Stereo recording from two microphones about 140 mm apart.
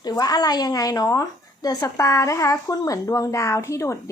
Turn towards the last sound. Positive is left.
turn(degrees=20)  # may be behind; listen again after turning